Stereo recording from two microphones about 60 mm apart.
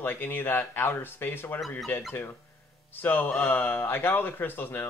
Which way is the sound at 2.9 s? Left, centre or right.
Left.